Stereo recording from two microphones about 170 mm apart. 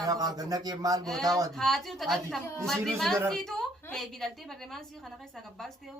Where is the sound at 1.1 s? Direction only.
Centre (ahead or behind).